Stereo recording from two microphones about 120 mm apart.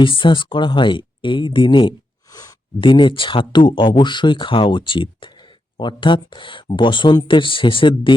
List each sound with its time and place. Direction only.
0.0 s speech: 45° left (ahead or behind)
2.3 s a sound: 30° left (ahead or behind)
2.8 s speech: 45° left (ahead or behind)